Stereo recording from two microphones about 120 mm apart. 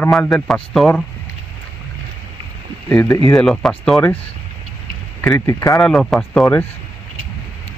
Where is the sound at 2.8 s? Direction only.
15° left (ahead or behind).